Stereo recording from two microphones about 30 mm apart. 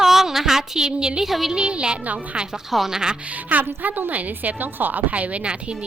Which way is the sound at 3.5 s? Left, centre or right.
Right.